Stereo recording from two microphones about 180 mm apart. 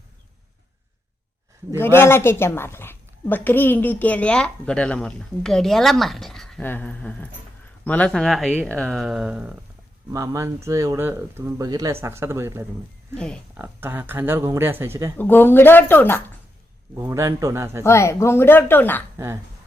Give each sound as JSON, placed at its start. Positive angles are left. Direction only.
{"t": 1.7, "sound": "a woman's voice", "side_deg": 10}
{"t": 10.1, "sound": "speech", "side_deg": -20}
{"t": 13.1, "sound": "speech", "side_deg": 5}
{"t": 13.6, "sound": "speech", "side_deg": -10}
{"t": 15.2, "sound": "a woman's voice", "side_deg": 10}
{"t": 17.0, "sound": "speech", "side_deg": -15}
{"t": 17.8, "sound": "a woman's voice", "side_deg": 15}
{"t": 19.1, "sound": "speech", "side_deg": -15}